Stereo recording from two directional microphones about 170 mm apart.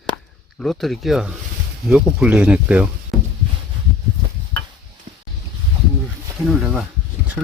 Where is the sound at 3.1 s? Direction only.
Centre (ahead or behind).